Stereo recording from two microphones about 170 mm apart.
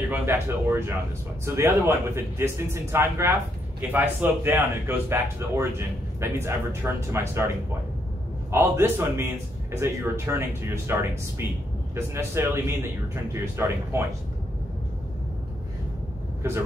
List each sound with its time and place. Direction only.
0.1 s a man's voice: 15° right (ahead or behind)
16.4 s speech: 15° right (ahead or behind)